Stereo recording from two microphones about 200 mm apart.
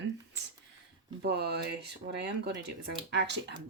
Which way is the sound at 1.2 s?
55° right (ahead or behind).